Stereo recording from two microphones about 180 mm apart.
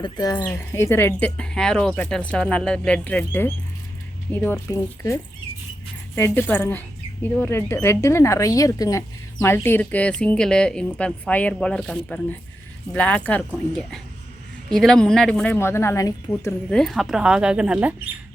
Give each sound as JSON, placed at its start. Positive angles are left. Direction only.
{"t": 0.0, "sound": "speech", "side_deg": 20}
{"t": 0.3, "sound": "speech", "side_deg": 10}
{"t": 16.6, "sound": "speech", "side_deg": 0}